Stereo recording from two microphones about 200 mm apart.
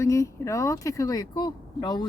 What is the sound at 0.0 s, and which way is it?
Speech, 15° left (ahead or behind).